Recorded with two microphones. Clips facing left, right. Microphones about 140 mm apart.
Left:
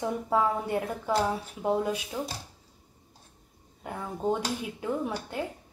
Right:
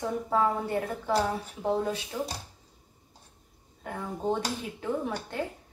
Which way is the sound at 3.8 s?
10° left (ahead or behind).